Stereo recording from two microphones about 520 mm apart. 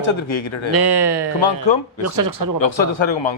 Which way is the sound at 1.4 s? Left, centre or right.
Left.